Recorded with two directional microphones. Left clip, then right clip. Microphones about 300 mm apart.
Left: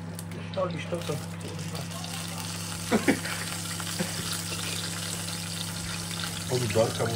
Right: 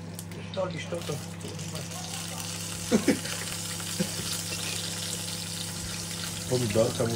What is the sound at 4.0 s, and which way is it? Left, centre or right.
Frying, centre.